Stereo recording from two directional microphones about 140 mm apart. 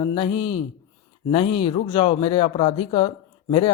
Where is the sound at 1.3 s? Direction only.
40° left (ahead or behind).